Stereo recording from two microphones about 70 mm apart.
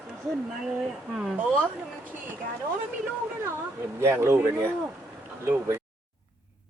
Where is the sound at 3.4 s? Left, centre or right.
Right.